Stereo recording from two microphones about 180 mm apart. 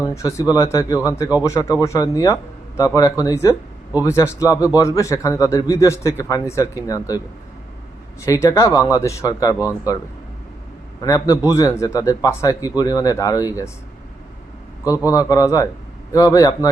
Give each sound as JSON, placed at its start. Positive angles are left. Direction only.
{"t": 0.0, "sound": "a man's voice", "side_deg": 20}
{"t": 8.2, "sound": "a man's voice", "side_deg": 20}
{"t": 11.0, "sound": "a man's voice", "side_deg": 20}
{"t": 15.0, "sound": "a man's voice", "side_deg": 20}